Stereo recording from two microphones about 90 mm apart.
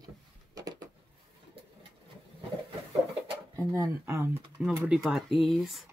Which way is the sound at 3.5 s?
35° right (ahead or behind).